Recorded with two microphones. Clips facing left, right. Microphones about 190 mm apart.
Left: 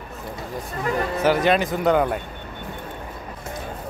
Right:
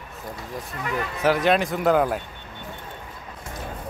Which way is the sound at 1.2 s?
Centre (ahead or behind).